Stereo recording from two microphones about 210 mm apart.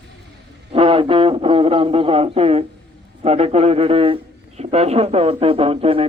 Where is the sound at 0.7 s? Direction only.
25° right (ahead or behind).